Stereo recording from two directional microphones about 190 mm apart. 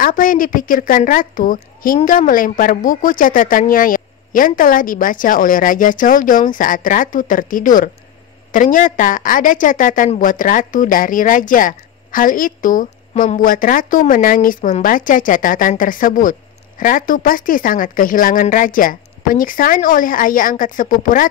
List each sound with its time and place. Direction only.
0.0 s a woman's voice: 45° left (ahead or behind)